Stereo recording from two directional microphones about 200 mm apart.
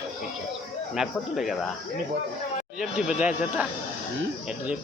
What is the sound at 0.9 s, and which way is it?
Speech, centre (ahead or behind).